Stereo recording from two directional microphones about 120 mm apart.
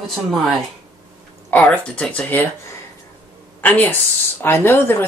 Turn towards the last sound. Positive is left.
turn(degrees=20)  # may be behind; listen again after turning